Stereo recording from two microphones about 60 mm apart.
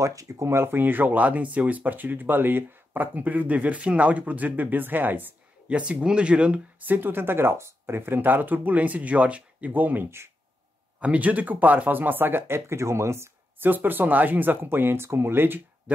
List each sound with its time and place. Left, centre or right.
0.0 s speech: right
0.5 s speech: right
5.7 s speech: right
6.9 s speech: right
13.6 s speech: right